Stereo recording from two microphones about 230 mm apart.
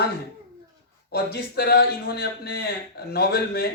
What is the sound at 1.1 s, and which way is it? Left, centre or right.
A man's voice, left.